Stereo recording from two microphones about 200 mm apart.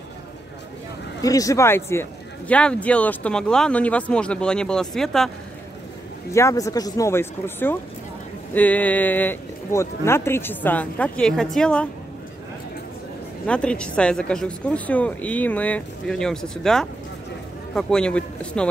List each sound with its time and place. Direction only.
1.2 s speech: 15° left (ahead or behind); by 5.3 s centre (ahead or behind)
6.3 s speech: 15° left (ahead or behind)
13.5 s speech: 5° left (ahead or behind)